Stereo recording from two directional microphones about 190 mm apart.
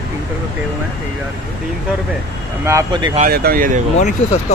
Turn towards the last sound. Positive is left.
turn(degrees=40)  # may be behind; listen again after turning